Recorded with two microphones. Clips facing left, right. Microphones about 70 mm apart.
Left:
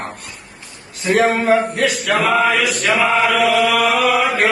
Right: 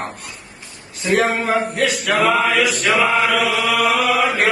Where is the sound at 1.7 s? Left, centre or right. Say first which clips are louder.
Left 1 dB; centre.